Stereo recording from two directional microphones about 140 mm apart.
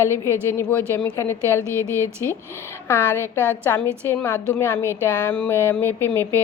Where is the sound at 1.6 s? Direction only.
20° right (ahead or behind).